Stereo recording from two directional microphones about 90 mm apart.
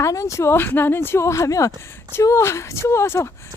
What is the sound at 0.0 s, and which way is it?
Speech, 35° left (ahead or behind).